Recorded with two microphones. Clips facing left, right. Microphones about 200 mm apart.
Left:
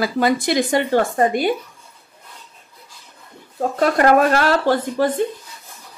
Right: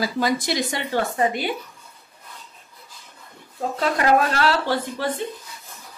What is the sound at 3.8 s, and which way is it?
Speech, 50° left (ahead or behind).